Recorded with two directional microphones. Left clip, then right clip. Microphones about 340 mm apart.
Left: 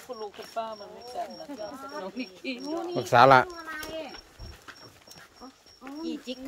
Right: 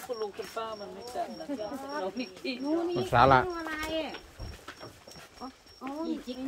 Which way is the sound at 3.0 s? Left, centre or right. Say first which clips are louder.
Left 5 dB; centre.